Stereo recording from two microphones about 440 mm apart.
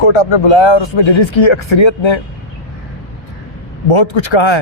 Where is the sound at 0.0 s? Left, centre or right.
Left.